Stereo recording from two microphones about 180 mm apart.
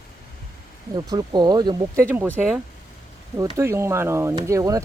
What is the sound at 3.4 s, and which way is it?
Speech, 20° right (ahead or behind).